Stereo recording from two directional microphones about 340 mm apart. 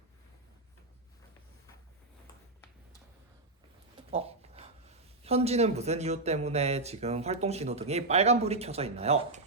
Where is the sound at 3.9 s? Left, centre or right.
Centre.